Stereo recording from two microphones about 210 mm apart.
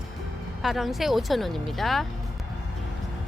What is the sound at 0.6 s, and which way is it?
Speech, centre (ahead or behind).